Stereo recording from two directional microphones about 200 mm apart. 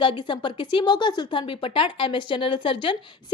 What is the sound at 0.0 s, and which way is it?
A woman's voice, 25° left (ahead or behind).